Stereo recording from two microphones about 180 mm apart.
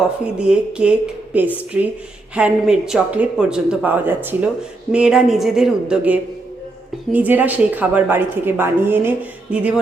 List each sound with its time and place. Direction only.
0.0 s a woman's voice: 5° right (ahead or behind)